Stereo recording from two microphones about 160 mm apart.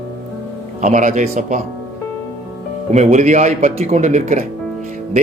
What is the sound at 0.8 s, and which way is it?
Speech, 50° right (ahead or behind).